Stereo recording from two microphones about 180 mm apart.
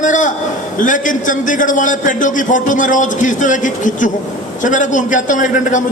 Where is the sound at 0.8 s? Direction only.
45° left (ahead or behind).